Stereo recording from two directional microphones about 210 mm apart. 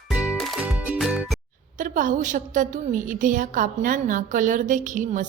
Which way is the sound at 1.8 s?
40° right (ahead or behind).